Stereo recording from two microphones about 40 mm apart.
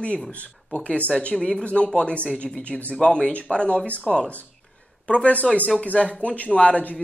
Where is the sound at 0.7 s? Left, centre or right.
Left.